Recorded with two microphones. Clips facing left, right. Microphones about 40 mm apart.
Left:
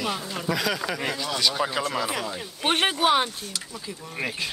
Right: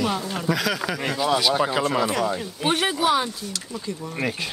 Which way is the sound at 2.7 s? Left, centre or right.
Left.